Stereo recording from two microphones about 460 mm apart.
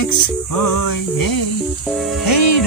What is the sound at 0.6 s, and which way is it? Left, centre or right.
Music, left.